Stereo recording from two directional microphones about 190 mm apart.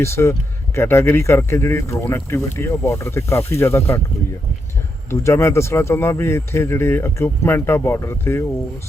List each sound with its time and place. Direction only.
0.0 s speech: 15° left (ahead or behind)
5.1 s speech: 15° left (ahead or behind)